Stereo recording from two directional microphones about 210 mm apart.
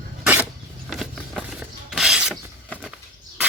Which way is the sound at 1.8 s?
5° right (ahead or behind).